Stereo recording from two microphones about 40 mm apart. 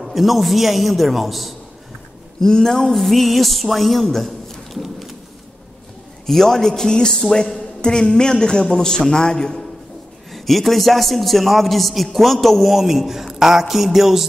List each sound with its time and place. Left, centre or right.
0.0 s a man's voice: centre
2.4 s a man's voice: centre
6.2 s a man's voice: centre
10.3 s a man's voice: centre